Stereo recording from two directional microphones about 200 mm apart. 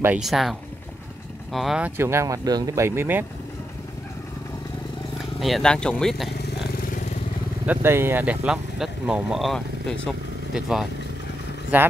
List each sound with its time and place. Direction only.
0.0 s speech: 5° right (ahead or behind)
5.4 s speech: centre (ahead or behind)
6.8 s vehicle: 40° left (ahead or behind)
7.6 s speech: 10° right (ahead or behind)